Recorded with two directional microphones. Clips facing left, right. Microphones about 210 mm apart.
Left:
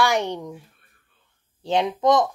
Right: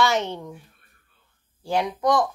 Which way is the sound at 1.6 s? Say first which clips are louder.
Left 3 dB; 20° left (ahead or behind).